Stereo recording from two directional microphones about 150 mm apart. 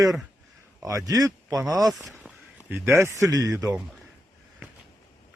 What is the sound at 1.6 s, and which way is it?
Speech, centre (ahead or behind).